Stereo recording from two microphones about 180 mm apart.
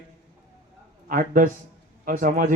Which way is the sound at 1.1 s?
50° right (ahead or behind).